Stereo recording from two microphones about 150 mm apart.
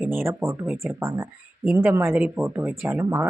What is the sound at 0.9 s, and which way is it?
Speech, 20° right (ahead or behind).